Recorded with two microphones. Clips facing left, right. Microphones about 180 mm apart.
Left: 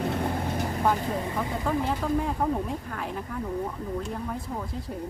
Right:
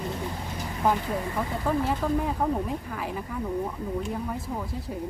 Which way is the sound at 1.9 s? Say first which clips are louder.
Right 1 dB; 5° right (ahead or behind).